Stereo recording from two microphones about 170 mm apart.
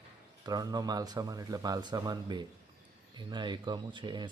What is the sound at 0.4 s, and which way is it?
Speech, 25° right (ahead or behind).